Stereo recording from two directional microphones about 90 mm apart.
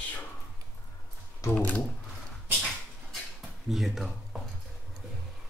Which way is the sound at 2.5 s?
Centre (ahead or behind).